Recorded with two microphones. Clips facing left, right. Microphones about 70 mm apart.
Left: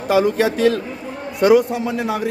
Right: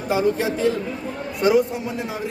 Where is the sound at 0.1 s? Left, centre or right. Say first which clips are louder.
Left 4 dB; left.